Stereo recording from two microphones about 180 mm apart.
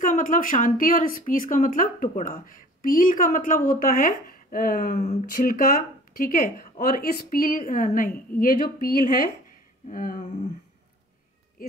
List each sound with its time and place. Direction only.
0.0 s speech: 45° left (ahead or behind)